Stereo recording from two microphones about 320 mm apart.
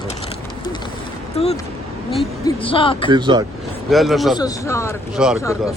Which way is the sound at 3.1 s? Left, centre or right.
Centre.